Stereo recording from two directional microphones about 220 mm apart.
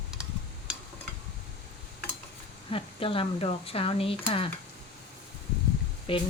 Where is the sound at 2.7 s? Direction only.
25° left (ahead or behind).